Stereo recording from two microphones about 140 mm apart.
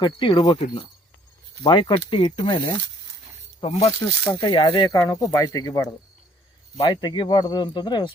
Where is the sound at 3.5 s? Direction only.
40° left (ahead or behind).